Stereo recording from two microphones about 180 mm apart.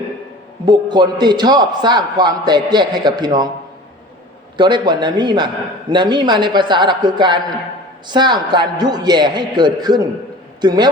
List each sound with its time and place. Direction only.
0.6 s a man's voice: 25° right (ahead or behind)
4.5 s a man's voice: 25° right (ahead or behind)